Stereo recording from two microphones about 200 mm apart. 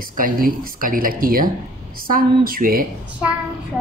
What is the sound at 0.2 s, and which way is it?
Speech, 45° right (ahead or behind).